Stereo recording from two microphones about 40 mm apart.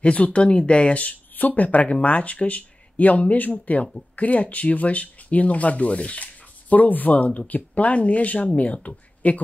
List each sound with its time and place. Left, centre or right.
0.0 s speech: left